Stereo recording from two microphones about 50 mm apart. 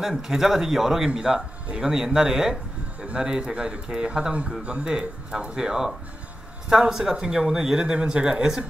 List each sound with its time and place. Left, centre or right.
0.0 s speech: centre